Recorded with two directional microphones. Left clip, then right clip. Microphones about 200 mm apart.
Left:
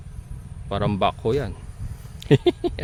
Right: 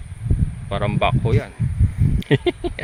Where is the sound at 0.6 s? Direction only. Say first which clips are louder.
Right 1 dB; 30° left (ahead or behind).